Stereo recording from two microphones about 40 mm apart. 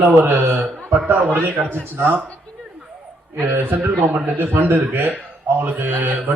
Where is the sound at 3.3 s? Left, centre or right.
Right.